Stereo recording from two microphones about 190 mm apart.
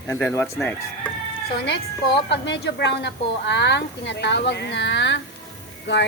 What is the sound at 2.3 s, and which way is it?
A woman's voice, 65° left (ahead or behind).